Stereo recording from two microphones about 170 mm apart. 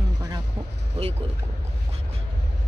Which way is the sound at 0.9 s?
40° right (ahead or behind).